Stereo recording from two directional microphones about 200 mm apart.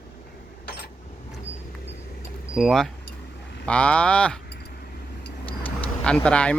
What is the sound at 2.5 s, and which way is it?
Speech, centre (ahead or behind).